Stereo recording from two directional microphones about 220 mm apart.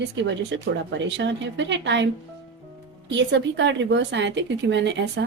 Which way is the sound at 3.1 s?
55° right (ahead or behind).